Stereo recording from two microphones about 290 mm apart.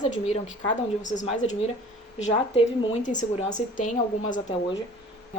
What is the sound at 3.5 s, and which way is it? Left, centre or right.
A woman's voice, left.